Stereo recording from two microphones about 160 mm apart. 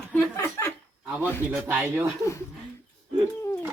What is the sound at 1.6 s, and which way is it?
Speech, 10° right (ahead or behind).